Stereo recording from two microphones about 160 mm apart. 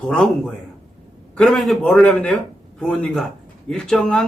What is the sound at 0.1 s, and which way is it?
A man's voice, 5° left (ahead or behind).